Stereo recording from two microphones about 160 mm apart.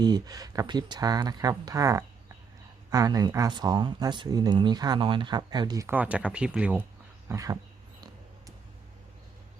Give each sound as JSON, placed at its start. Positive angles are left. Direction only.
{"t": 0.0, "sound": "speech", "side_deg": -25}
{"t": 7.3, "sound": "speech", "side_deg": -20}